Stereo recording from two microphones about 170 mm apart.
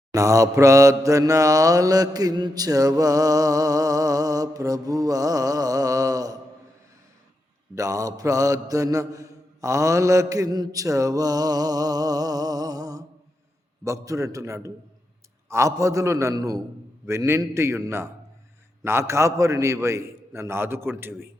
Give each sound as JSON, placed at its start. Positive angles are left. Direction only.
{"t": 0.1, "sound": "mantra", "side_deg": -20}
{"t": 7.8, "sound": "mantra", "side_deg": -20}
{"t": 17.1, "sound": "a man's voice", "side_deg": -15}